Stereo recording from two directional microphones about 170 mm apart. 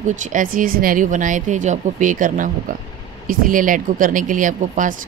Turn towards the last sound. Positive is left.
turn(degrees=-50)  # may be behind; listen again after turning